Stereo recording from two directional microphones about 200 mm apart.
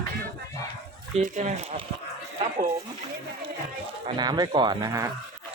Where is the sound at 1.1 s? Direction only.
35° right (ahead or behind).